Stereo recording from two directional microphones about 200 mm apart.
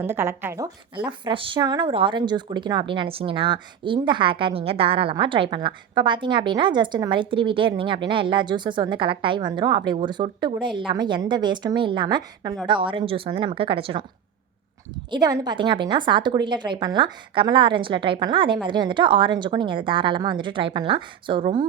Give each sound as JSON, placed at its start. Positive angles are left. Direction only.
{"t": 0.0, "sound": "a woman's voice", "side_deg": -10}
{"t": 0.9, "sound": "speech", "side_deg": -25}
{"t": 15.1, "sound": "speech", "side_deg": -20}